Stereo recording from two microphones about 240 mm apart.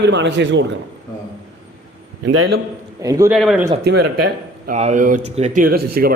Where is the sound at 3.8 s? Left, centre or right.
Right.